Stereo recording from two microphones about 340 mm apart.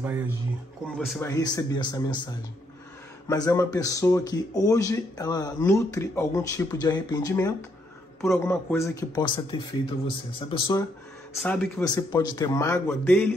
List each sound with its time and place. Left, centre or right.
0.9 s speech: centre
3.3 s speech: centre
11.3 s speech: centre